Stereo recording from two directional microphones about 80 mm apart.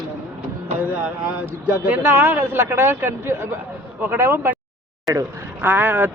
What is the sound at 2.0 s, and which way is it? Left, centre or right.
Speech, right.